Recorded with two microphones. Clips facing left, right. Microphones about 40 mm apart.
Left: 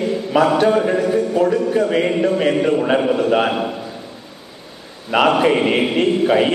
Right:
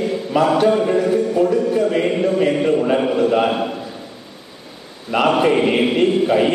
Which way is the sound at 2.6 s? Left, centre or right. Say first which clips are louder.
Even; centre.